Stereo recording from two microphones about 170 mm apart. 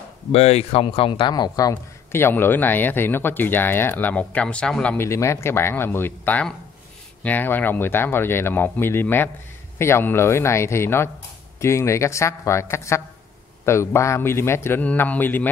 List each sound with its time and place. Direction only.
0.3 s speech: 35° left (ahead or behind)
2.1 s speech: 15° left (ahead or behind)